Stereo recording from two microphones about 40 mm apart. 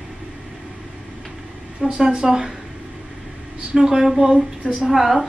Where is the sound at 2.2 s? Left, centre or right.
Centre.